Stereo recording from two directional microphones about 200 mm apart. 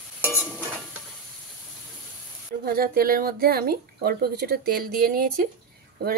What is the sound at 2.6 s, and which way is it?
Speech, 50° right (ahead or behind).